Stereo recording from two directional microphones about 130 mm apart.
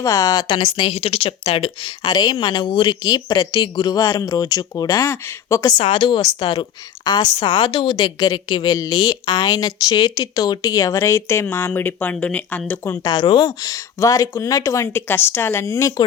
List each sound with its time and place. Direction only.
0.0 s a woman's voice: 25° left (ahead or behind)
5.8 s a woman's voice: 45° left (ahead or behind); by 13.0 s 15° left (ahead or behind)
13.1 s speech: 35° left (ahead or behind)